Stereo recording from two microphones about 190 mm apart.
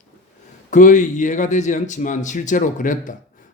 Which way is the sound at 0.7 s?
40° left (ahead or behind).